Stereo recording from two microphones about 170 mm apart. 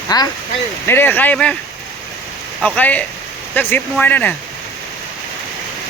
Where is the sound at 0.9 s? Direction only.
10° left (ahead or behind).